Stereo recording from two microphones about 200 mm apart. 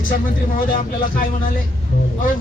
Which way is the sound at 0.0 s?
45° left (ahead or behind).